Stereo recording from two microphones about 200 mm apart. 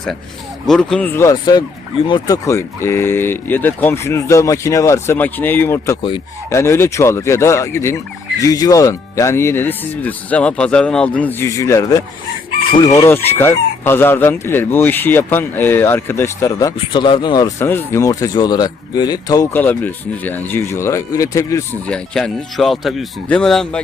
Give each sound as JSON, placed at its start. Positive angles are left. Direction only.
{"t": 0.7, "sound": "speech", "side_deg": 5}
{"t": 6.0, "sound": "speech", "side_deg": 25}
{"t": 6.5, "sound": "speech", "side_deg": 15}
{"t": 21.8, "sound": "speech", "side_deg": 5}